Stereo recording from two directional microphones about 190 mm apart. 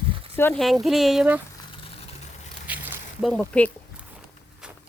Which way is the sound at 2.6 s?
10° right (ahead or behind).